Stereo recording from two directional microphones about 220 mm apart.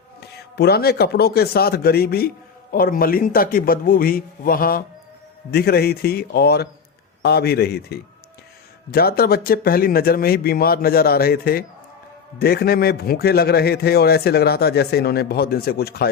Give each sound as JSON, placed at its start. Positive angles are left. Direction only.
{"t": 0.2, "sound": "a man's voice", "side_deg": 45}